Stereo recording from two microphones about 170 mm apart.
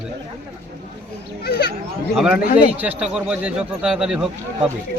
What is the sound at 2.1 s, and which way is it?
Speech, 5° right (ahead or behind).